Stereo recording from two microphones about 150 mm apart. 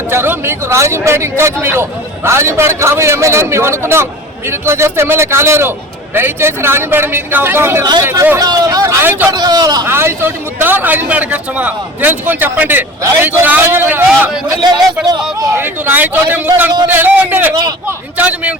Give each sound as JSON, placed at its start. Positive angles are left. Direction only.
{"t": 0.1, "sound": "speech", "side_deg": -15}
{"t": 9.3, "sound": "speech", "side_deg": -25}
{"t": 14.5, "sound": "speech", "side_deg": -25}
{"t": 17.5, "sound": "speech", "side_deg": -25}
{"t": 18.2, "sound": "speech", "side_deg": -10}